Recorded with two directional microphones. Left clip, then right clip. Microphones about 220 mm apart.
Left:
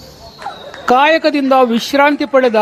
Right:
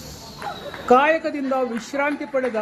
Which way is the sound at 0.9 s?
35° left (ahead or behind).